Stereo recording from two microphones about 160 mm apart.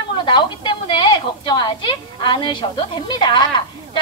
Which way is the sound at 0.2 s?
30° left (ahead or behind).